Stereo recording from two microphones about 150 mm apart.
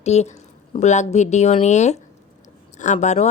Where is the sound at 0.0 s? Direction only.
45° left (ahead or behind).